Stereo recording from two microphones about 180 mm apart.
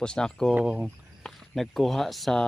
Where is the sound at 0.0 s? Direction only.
5° left (ahead or behind).